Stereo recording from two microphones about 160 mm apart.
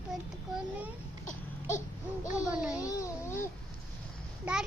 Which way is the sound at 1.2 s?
50° left (ahead or behind).